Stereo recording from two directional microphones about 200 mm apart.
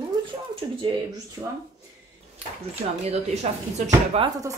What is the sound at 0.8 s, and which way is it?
Speech, 20° right (ahead or behind).